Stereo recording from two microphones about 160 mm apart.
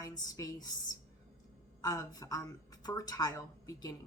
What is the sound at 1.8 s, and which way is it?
A woman's voice, 20° left (ahead or behind).